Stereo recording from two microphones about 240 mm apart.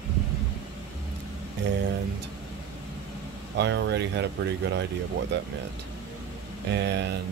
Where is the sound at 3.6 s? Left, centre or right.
Right.